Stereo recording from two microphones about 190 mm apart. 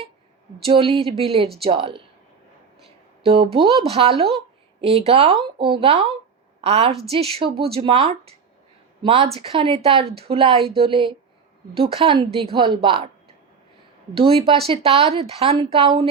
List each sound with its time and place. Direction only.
0.6 s speech: 30° right (ahead or behind)
3.2 s a woman's voice: 30° right (ahead or behind)
14.2 s speech: 30° right (ahead or behind)